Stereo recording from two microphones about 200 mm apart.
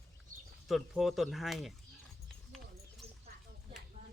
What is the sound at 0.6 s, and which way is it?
Speech, centre (ahead or behind).